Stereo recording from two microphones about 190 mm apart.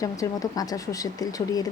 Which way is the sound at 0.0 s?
20° left (ahead or behind).